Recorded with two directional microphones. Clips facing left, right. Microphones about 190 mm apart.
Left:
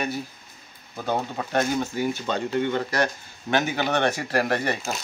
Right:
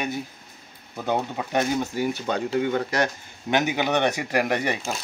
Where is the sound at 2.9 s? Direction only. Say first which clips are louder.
Even; 15° right (ahead or behind).